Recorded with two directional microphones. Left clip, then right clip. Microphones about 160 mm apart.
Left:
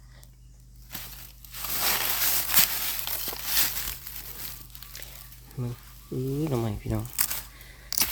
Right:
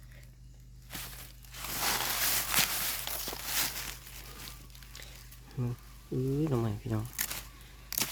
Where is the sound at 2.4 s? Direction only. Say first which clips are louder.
Left 5 dB; 40° left (ahead or behind).